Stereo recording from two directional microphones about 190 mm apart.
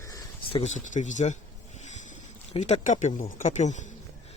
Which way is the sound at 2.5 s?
35° left (ahead or behind).